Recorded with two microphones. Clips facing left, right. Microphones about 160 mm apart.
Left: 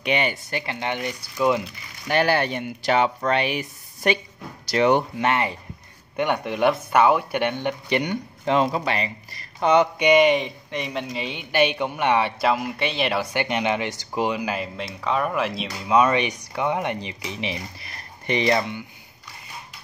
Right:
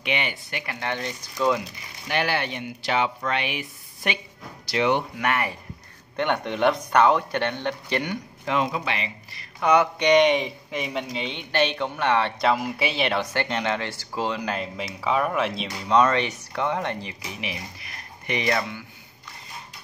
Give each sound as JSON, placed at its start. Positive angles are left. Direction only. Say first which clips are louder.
{"t": 0.0, "sound": "speech", "louder": "left 5 dB", "side_deg": 40}
{"t": 0.7, "sound": "speech", "louder": "right 1 dB", "side_deg": 15}
{"t": 2.0, "sound": "speech", "louder": "left 5 dB", "side_deg": 40}
{"t": 5.2, "sound": "speech", "louder": "left 3 dB", "side_deg": 25}
{"t": 6.1, "sound": "speech", "louder": "left 1 dB", "side_deg": 10}
{"t": 8.5, "sound": "speech", "louder": "left 4 dB", "side_deg": 35}
{"t": 9.9, "sound": "speech", "louder": "left 1 dB", "side_deg": 5}